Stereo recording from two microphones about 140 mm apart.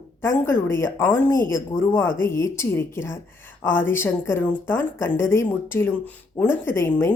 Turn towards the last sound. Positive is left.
turn(degrees=15)  # may be behind; listen again after turning